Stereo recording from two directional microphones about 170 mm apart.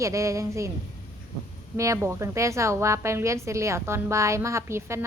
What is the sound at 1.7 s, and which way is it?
A woman's voice, 15° right (ahead or behind).